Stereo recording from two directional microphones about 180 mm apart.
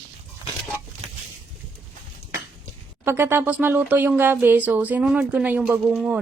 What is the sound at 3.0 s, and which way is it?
Speech, 15° right (ahead or behind).